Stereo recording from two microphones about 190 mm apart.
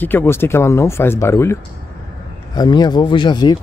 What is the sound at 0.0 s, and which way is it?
Speech, 10° left (ahead or behind).